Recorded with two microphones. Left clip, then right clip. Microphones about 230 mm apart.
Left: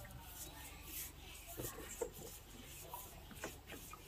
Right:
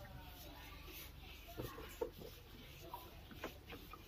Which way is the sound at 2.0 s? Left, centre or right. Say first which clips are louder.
Even; left.